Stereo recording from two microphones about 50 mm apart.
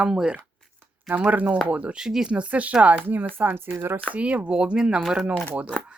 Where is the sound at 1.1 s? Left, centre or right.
Right.